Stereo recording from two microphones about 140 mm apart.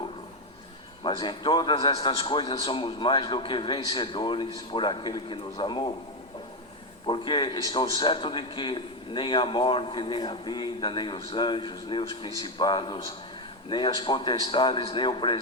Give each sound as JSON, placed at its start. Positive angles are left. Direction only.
{"t": 1.0, "sound": "a man's voice", "side_deg": 35}
{"t": 7.1, "sound": "a man's voice", "side_deg": 35}